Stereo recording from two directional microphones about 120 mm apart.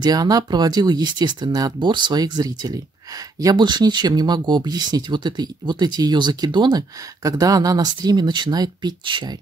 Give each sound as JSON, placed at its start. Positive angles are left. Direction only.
{"t": 0.0, "sound": "speech", "side_deg": -35}